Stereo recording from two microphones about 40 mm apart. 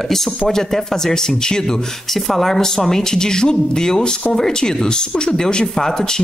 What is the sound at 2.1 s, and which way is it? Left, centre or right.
A woman's voice, centre.